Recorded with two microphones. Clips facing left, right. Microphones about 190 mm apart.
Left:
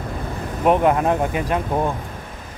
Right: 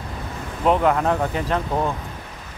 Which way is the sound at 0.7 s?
15° left (ahead or behind).